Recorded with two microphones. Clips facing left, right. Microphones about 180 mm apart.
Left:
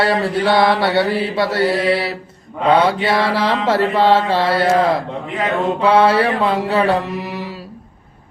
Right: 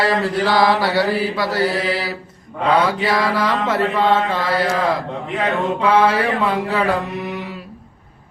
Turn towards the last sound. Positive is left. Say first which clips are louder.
# left 3 dB
turn(degrees=30)  # may be behind; listen again after turning